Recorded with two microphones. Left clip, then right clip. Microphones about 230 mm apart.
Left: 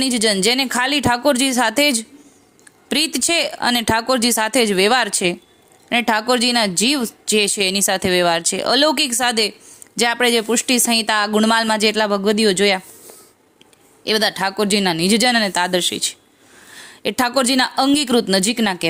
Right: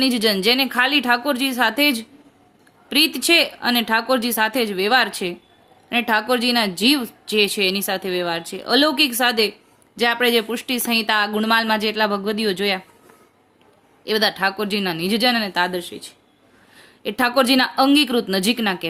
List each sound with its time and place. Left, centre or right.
0.0 s speech: left
14.0 s speech: left